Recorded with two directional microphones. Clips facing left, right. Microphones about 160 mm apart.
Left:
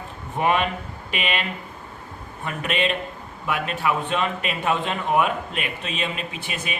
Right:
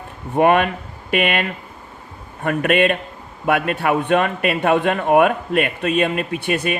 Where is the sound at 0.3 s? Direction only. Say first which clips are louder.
Right 7 dB; 55° right (ahead or behind).